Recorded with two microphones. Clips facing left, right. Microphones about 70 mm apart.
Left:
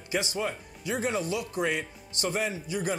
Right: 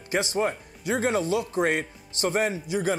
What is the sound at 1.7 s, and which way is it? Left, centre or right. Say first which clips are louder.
Speech: right 4 dB; right.